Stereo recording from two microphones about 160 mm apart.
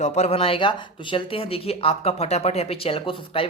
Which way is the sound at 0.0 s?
40° left (ahead or behind).